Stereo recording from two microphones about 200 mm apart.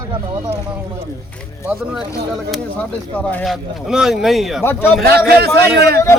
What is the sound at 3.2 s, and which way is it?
Speech, 5° left (ahead or behind).